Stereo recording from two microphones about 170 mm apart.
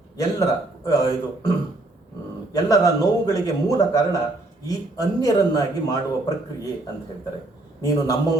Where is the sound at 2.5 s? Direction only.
20° left (ahead or behind).